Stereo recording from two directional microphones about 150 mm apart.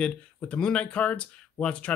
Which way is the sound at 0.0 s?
5° left (ahead or behind).